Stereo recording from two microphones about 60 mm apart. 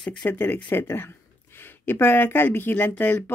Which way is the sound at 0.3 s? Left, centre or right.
Left.